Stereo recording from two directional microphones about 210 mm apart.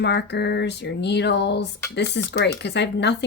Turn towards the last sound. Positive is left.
turn(degrees=55)  # may be behind; listen again after turning